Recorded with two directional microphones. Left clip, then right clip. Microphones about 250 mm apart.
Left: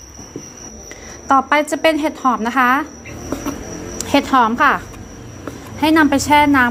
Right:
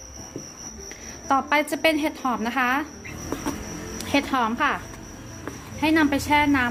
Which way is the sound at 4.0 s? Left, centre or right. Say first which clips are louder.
Left 9 dB; centre.